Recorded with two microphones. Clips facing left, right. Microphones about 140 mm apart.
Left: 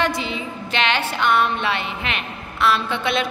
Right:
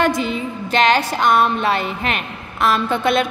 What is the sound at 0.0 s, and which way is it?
Music, 45° right (ahead or behind).